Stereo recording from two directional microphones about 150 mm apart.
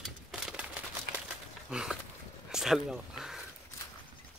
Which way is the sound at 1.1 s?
85° right.